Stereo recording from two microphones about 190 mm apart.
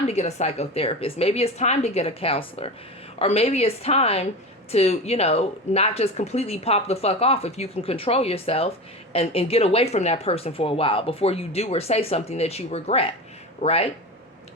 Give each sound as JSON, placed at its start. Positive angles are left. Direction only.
{"t": 0.1, "sound": "speech", "side_deg": 35}